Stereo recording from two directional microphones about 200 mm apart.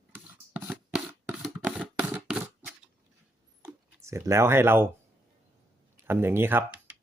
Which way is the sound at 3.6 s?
15° right (ahead or behind).